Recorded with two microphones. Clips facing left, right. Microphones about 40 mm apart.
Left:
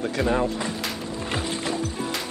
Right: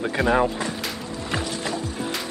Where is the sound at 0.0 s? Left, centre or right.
Right.